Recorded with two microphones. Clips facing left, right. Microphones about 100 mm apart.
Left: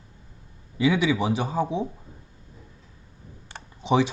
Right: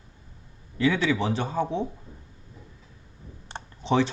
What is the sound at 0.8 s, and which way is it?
Speech, 15° left (ahead or behind).